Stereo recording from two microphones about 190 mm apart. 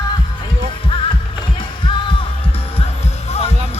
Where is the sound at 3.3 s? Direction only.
35° left (ahead or behind).